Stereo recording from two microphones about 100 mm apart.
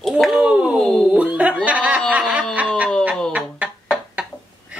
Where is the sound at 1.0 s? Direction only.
10° right (ahead or behind).